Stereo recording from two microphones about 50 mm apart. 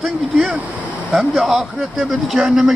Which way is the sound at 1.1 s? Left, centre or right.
Centre.